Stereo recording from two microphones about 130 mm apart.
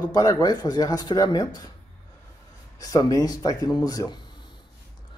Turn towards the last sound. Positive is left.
turn(degrees=30)  # may be behind; listen again after turning